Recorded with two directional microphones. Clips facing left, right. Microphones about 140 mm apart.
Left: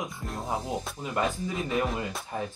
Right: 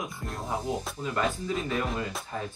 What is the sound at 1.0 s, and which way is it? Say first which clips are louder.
Speech: even; 20° left (ahead or behind).